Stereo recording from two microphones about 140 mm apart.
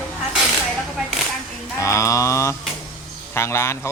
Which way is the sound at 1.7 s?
20° left (ahead or behind).